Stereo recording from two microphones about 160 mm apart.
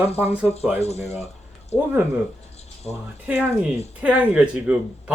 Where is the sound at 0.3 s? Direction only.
40° left (ahead or behind).